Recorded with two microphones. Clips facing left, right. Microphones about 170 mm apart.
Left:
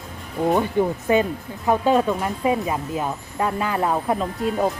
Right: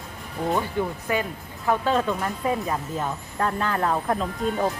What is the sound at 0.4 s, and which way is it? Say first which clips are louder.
Speech: left 6 dB; 20° left (ahead or behind).